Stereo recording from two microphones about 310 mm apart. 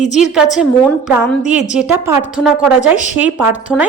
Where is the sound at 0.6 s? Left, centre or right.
Centre.